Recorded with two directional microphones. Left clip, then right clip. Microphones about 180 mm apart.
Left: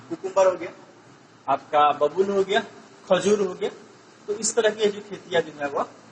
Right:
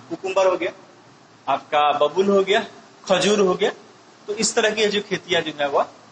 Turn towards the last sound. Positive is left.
turn(degrees=-40)  # may be behind; listen again after turning